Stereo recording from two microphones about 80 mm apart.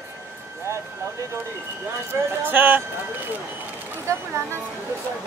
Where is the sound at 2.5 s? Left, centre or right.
Right.